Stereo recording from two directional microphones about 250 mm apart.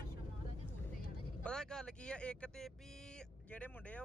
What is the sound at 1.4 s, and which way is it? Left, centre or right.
Speech, centre.